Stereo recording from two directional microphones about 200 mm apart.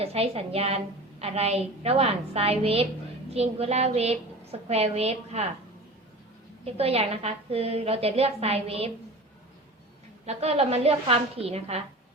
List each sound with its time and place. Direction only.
0.0 s a woman's voice: 30° right (ahead or behind)
6.7 s a woman's voice: 30° right (ahead or behind)
10.2 s a woman's voice: 30° right (ahead or behind)